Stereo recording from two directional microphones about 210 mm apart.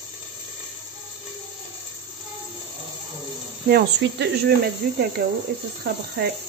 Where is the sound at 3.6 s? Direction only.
50° right (ahead or behind).